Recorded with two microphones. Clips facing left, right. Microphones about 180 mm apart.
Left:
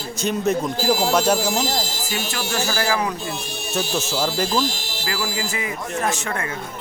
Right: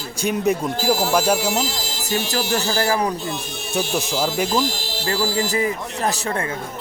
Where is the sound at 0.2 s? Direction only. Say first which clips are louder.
Right 1 dB; 10° right (ahead or behind).